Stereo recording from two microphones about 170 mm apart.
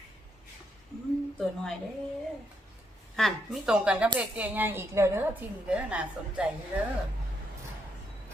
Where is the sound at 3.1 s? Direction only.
Centre (ahead or behind).